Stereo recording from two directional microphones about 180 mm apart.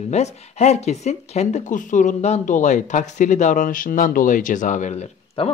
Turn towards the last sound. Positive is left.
turn(degrees=35)  # may be behind; listen again after turning